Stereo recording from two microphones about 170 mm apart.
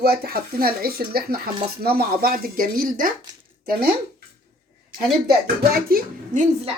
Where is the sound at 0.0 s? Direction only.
65° right (ahead or behind).